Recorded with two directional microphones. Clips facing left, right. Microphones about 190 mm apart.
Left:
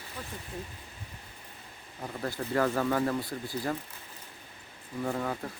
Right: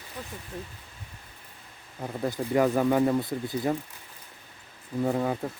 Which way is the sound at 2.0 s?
15° right (ahead or behind).